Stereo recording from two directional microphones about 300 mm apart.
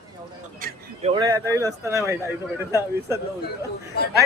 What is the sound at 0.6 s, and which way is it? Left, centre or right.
Speech, right.